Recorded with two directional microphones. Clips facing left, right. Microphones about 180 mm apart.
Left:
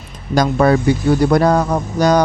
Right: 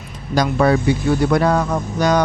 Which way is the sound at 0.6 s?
45° left (ahead or behind).